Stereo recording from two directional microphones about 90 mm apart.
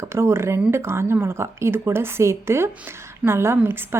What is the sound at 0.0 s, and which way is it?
A woman's voice, 30° right (ahead or behind).